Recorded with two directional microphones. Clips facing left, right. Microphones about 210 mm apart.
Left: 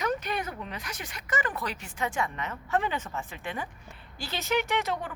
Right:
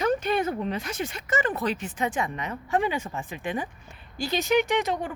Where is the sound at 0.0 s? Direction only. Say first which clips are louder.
Right 6 dB; 30° right (ahead or behind).